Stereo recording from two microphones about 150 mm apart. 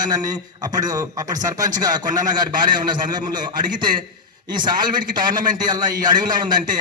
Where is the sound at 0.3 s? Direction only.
25° right (ahead or behind).